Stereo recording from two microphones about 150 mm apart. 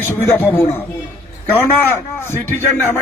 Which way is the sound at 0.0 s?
10° left (ahead or behind).